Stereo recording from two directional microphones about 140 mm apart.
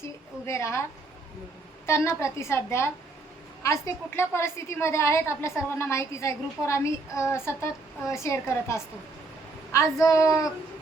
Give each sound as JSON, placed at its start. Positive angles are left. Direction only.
{"t": 0.4, "sound": "a woman's voice", "side_deg": 20}
{"t": 1.9, "sound": "a woman's voice", "side_deg": 20}